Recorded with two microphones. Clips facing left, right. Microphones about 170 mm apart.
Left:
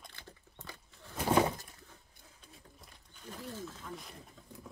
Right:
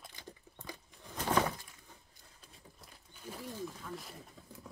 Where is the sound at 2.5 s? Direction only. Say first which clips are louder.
Even; 5° right (ahead or behind).